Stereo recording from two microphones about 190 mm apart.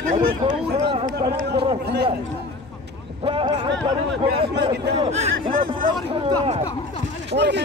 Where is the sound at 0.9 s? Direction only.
25° right (ahead or behind).